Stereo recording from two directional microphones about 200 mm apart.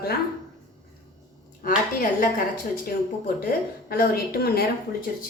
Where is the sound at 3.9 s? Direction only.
50° left (ahead or behind).